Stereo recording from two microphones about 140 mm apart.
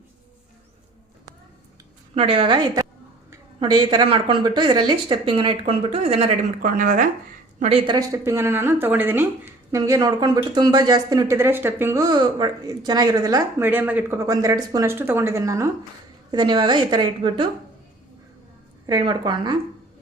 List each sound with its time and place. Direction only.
2.1 s speech: 40° right (ahead or behind)
6.6 s speech: 70° right (ahead or behind)
7.6 s speech: 45° right (ahead or behind)
7.9 s speech: 20° right (ahead or behind)
12.0 s speech: 30° right (ahead or behind)
13.6 s speech: 15° right (ahead or behind)
14.2 s speech: 25° right (ahead or behind)
16.3 s speech: 35° right (ahead or behind)
18.9 s speech: 30° right (ahead or behind)